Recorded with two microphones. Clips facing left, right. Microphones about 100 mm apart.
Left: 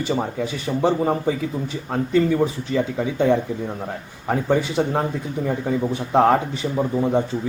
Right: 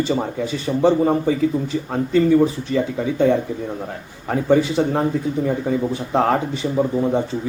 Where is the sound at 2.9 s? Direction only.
15° left (ahead or behind).